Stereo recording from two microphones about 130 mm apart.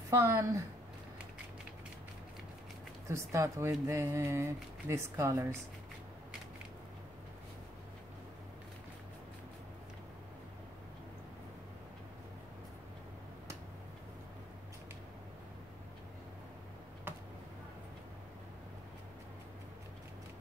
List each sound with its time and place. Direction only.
0.1 s speech: 25° right (ahead or behind)
3.1 s speech: 20° right (ahead or behind)